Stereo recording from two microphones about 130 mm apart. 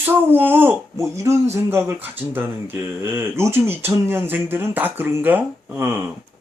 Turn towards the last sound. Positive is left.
turn(degrees=-15)  # may be behind; listen again after turning